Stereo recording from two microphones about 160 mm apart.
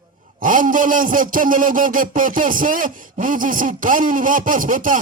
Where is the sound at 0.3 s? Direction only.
55° right (ahead or behind).